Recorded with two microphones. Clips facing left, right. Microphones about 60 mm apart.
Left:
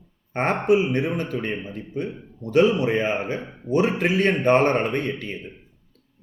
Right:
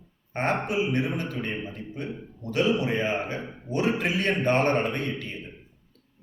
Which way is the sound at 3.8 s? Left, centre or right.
Left.